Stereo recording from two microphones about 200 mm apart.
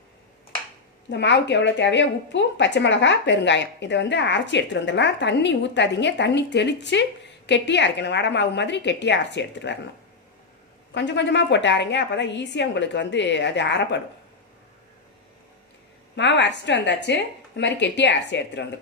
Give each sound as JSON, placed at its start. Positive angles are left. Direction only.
{"t": 1.1, "sound": "a woman's voice", "side_deg": 60}
{"t": 10.9, "sound": "a woman's voice", "side_deg": 60}
{"t": 16.1, "sound": "a woman's voice", "side_deg": 60}